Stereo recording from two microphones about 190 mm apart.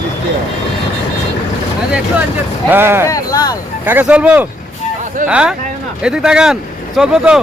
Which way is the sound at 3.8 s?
10° right (ahead or behind).